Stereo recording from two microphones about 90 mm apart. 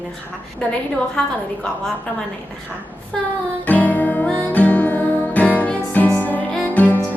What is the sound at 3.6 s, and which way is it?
Music, 20° left (ahead or behind).